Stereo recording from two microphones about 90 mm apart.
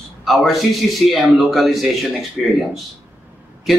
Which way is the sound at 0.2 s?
Centre (ahead or behind).